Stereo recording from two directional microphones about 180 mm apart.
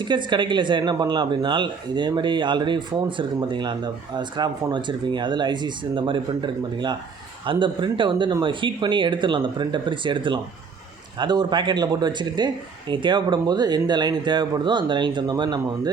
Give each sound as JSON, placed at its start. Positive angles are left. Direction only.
{"t": 0.0, "sound": "speech", "side_deg": -25}